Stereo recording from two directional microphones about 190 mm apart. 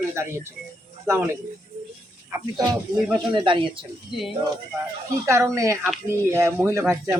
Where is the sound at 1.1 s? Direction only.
15° right (ahead or behind).